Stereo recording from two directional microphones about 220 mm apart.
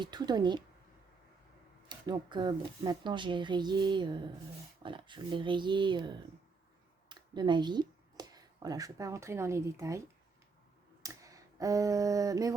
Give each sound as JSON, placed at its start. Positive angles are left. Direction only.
{"t": 0.0, "sound": "speech", "side_deg": -20}
{"t": 1.9, "sound": "speech", "side_deg": -20}
{"t": 11.0, "sound": "a sound", "side_deg": -15}